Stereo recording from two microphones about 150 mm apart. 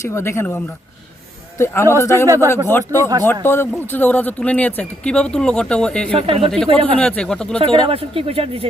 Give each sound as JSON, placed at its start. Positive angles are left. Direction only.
{"t": 0.0, "sound": "a man's voice", "side_deg": 15}
{"t": 2.2, "sound": "speech", "side_deg": -20}
{"t": 2.6, "sound": "speech", "side_deg": 15}
{"t": 3.0, "sound": "speech", "side_deg": -25}
{"t": 3.4, "sound": "speech", "side_deg": 15}
{"t": 6.1, "sound": "speech", "side_deg": -40}
{"t": 7.0, "sound": "speech", "side_deg": 5}
{"t": 7.9, "sound": "speech", "side_deg": -40}